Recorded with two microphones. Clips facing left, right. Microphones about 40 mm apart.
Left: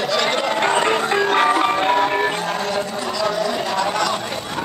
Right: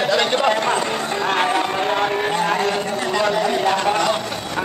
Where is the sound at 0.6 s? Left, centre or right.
Left.